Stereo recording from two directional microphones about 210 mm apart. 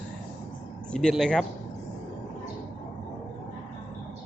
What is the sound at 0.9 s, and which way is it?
Speech, 5° left (ahead or behind).